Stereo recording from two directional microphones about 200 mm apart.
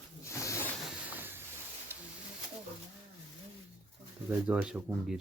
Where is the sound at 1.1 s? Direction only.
10° right (ahead or behind).